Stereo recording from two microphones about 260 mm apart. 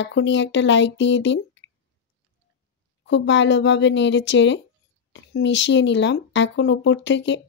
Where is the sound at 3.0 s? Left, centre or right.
Left.